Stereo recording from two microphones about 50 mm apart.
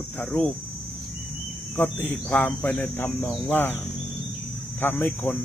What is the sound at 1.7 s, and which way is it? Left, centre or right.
Cricket, left.